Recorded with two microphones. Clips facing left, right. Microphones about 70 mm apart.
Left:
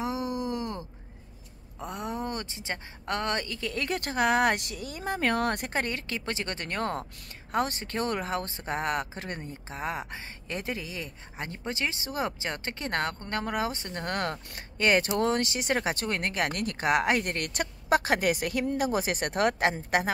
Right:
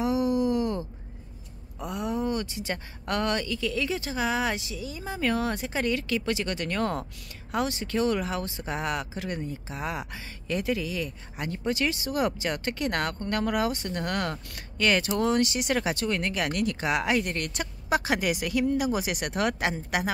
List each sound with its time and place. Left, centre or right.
0.0 s groan: left
1.9 s speech: left